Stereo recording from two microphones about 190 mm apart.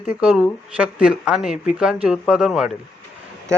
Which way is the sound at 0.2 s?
5° right (ahead or behind).